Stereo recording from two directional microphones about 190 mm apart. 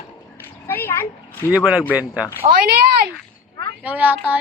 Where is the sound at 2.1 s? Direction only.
15° left (ahead or behind).